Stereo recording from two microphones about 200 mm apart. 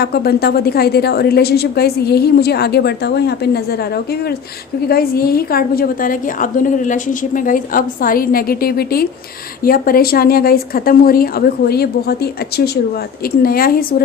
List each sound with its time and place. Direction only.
0.0 s a woman's voice: 50° left (ahead or behind)
4.9 s a woman's voice: 50° left (ahead or behind)